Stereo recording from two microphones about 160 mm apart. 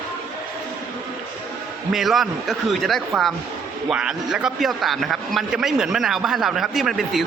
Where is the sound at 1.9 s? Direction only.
Centre (ahead or behind).